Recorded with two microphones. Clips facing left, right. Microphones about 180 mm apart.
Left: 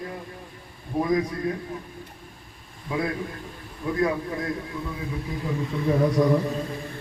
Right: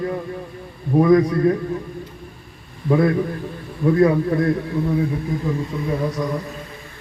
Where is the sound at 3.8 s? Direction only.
65° right (ahead or behind).